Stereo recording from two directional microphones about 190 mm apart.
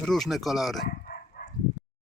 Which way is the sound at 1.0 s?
50° left (ahead or behind).